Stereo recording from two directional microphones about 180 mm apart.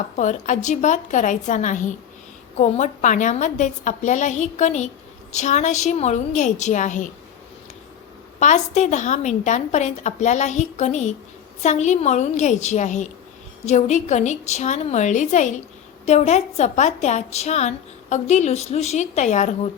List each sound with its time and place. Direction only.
0.2 s a woman's voice: 45° left (ahead or behind)
8.4 s a woman's voice: 40° left (ahead or behind)